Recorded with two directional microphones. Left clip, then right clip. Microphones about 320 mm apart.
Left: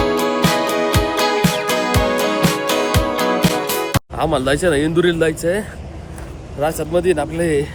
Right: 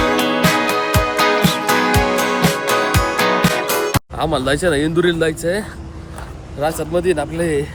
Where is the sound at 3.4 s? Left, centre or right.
Centre.